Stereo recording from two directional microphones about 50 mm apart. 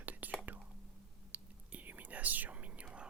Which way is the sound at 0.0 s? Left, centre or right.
Right.